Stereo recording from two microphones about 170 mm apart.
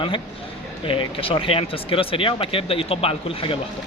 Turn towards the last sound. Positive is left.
turn(degrees=30)  # may be behind; listen again after turning